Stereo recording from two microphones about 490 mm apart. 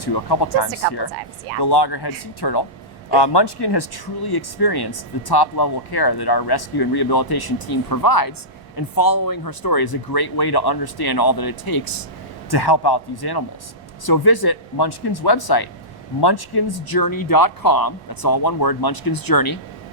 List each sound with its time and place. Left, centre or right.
0.0 s speech: left